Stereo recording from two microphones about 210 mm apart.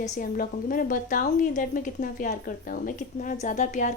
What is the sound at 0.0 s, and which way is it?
A woman's voice, 40° left (ahead or behind).